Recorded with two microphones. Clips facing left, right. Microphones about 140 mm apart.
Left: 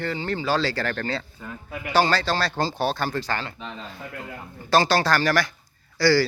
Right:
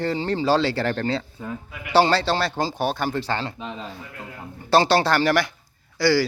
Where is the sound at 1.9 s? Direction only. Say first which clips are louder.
Right 3 dB; 25° right (ahead or behind).